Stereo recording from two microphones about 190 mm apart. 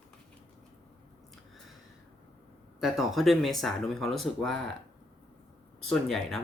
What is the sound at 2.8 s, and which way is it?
Speech, centre (ahead or behind).